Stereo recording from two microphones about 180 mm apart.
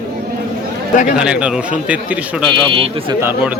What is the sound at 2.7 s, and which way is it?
Speech, 30° right (ahead or behind).